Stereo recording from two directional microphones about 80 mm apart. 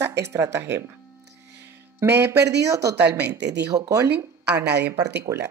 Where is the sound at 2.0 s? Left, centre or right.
Right.